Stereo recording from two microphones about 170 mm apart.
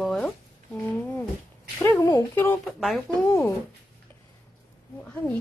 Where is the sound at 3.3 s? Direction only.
15° left (ahead or behind).